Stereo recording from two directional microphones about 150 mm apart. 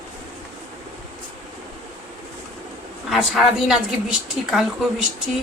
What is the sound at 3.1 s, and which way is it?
A woman's voice, 5° right (ahead or behind).